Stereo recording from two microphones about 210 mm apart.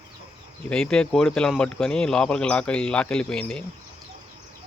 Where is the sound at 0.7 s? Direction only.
5° left (ahead or behind).